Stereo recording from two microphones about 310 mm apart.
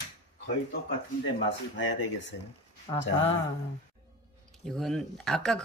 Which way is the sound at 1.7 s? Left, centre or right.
Left.